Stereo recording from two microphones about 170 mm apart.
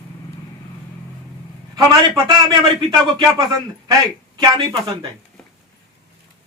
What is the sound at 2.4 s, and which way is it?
A man's voice, 25° right (ahead or behind).